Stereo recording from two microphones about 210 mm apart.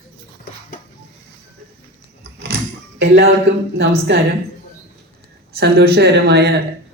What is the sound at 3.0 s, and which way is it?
A woman's voice, 50° right (ahead or behind).